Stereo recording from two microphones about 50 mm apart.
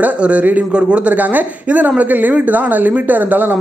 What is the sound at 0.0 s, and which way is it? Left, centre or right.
Speech, right.